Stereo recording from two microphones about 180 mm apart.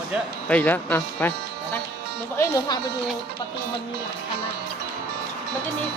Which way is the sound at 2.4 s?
20° left (ahead or behind).